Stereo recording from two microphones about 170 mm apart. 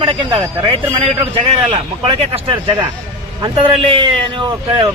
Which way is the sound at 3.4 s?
30° right (ahead or behind).